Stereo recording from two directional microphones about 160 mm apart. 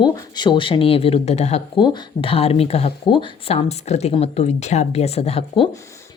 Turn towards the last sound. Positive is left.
turn(degrees=35)  # may be behind; listen again after turning